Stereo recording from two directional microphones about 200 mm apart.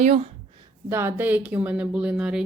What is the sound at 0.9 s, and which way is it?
Speech, 10° right (ahead or behind).